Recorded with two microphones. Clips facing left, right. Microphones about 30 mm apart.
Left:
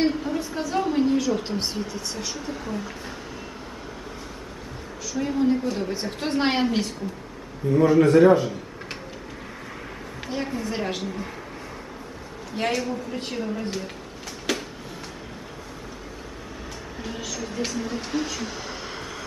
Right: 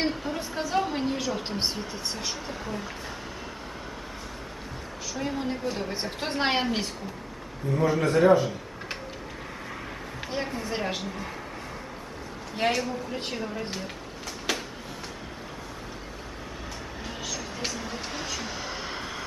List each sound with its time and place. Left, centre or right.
0.0 s a sound: centre
0.5 s a woman's voice: centre
1.8 s a woman's voice: centre
5.1 s a woman's voice: centre
8.4 s a sound: centre
10.2 s a woman's voice: centre
12.5 s a woman's voice: centre
14.5 s a sound: centre
17.0 s speech: centre